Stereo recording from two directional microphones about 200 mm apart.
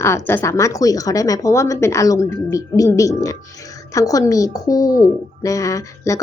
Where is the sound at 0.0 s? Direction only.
10° left (ahead or behind).